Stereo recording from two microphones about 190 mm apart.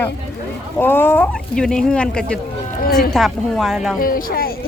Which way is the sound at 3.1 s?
Centre (ahead or behind).